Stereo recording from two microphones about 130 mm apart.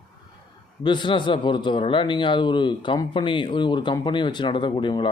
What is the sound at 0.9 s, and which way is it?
A man's voice, 35° left (ahead or behind).